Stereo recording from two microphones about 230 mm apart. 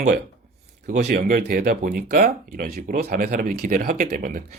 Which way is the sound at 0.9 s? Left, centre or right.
Right.